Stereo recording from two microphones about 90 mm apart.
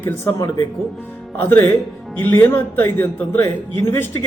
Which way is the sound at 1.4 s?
25° left (ahead or behind).